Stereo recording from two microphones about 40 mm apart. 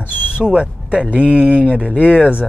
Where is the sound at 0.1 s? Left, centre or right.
Right.